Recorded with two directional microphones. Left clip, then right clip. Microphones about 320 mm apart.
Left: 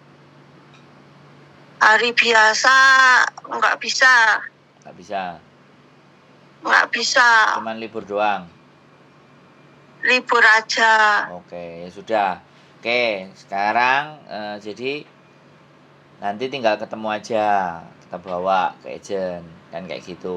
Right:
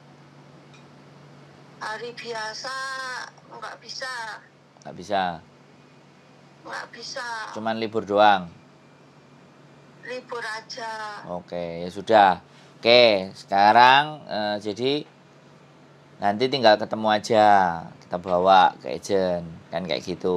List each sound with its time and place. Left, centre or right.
1.8 s a woman's voice: left
4.8 s speech: right
6.6 s a woman's voice: left
7.6 s speech: right
10.0 s a woman's voice: left
11.3 s speech: right
11.9 s speech: right
16.2 s speech: right